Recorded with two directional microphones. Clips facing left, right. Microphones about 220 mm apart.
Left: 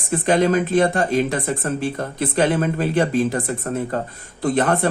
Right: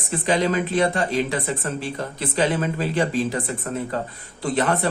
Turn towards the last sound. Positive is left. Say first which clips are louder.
# left 3 dB
turn(degrees=50)  # may be behind; listen again after turning